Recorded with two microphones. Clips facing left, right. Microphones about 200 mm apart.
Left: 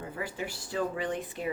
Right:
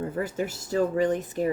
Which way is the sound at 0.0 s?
45° right (ahead or behind).